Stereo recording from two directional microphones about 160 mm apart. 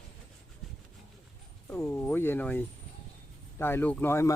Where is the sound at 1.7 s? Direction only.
15° left (ahead or behind).